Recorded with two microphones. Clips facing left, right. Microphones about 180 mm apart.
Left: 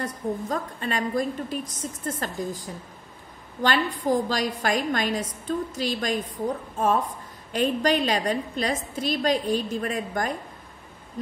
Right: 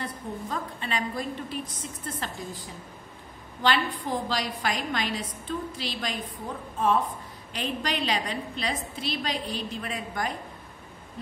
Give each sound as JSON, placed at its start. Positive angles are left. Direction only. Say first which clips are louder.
{"t": 0.0, "sound": "a woman's voice", "louder": "left 6 dB", "side_deg": 45}
{"t": 3.6, "sound": "a woman's voice", "louder": "left 3 dB", "side_deg": 45}
{"t": 7.5, "sound": "a woman's voice", "louder": "left 8 dB", "side_deg": 45}